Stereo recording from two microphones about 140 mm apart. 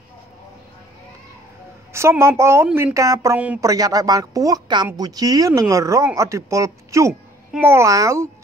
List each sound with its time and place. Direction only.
1.9 s speech: 20° right (ahead or behind)